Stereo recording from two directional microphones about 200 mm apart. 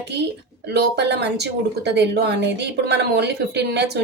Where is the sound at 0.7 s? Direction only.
55° right (ahead or behind).